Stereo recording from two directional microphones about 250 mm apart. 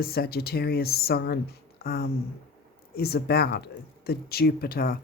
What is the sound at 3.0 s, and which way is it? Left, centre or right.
Speech, left.